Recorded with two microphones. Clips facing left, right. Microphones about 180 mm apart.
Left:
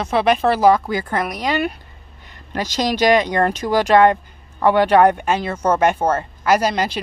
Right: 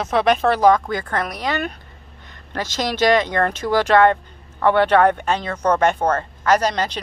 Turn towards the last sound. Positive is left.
turn(degrees=10)  # may be behind; listen again after turning